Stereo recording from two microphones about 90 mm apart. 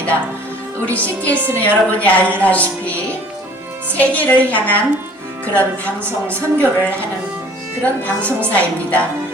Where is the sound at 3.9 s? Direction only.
15° left (ahead or behind).